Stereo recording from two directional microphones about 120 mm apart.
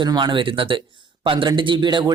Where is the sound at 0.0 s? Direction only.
40° right (ahead or behind).